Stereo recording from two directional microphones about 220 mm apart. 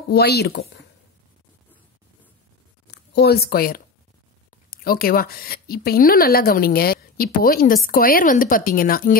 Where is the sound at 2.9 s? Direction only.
50° left (ahead or behind).